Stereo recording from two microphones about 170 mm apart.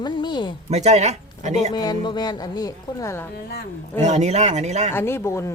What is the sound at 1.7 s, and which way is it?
A woman's voice, 25° left (ahead or behind).